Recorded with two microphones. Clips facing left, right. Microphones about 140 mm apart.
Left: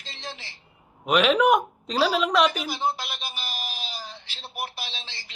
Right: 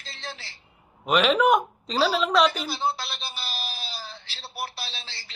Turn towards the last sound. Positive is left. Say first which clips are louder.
# left 1 dB
turn(degrees=15)  # may be behind; listen again after turning